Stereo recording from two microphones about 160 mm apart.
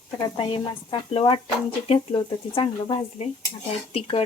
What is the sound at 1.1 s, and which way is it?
Speech, 35° left (ahead or behind).